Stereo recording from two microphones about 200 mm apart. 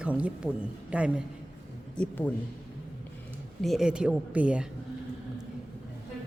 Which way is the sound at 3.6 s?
Centre (ahead or behind).